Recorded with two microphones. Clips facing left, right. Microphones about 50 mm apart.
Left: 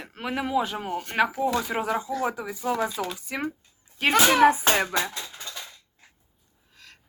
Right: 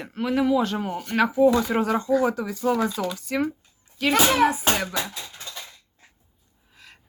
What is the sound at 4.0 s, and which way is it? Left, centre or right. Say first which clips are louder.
A child's voice: left 1 dB; left.